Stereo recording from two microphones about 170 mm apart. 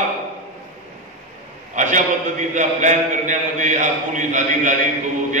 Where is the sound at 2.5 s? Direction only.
45° right (ahead or behind).